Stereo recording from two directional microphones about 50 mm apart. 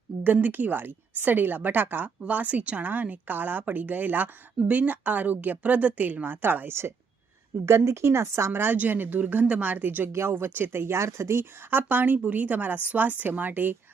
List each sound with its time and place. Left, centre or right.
0.3 s a woman's voice: right
7.6 s a woman's voice: right
8.7 s a woman's voice: right
10.1 s a woman's voice: right
10.3 s a woman's voice: right